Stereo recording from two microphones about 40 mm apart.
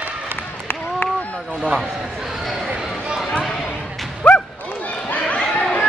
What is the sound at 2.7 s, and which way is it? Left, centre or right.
Run, centre.